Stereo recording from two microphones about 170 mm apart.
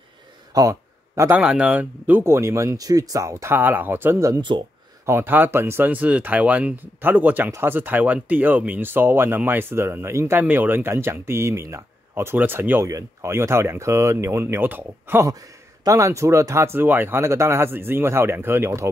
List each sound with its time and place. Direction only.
0.6 s a sound: 20° right (ahead or behind)
1.4 s speech: 5° right (ahead or behind); by 4.6 s 30° right (ahead or behind)
5.0 s speech: 15° right (ahead or behind)